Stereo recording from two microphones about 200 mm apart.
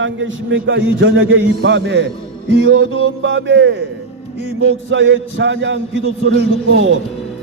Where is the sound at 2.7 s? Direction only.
80° right; by 3.8 s 65° right (ahead or behind).